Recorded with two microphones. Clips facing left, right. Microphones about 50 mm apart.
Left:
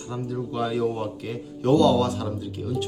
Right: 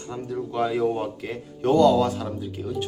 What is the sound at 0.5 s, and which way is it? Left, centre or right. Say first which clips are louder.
Speech: right 2 dB; centre.